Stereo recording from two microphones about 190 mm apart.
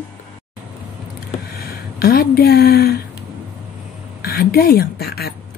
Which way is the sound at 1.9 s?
55° left (ahead or behind).